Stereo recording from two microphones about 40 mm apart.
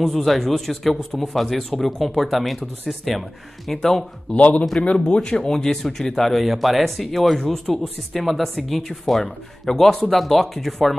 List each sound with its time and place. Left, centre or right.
0.0 s speech: centre
4.4 s speech: left
4.9 s speech: left
5.5 s speech: centre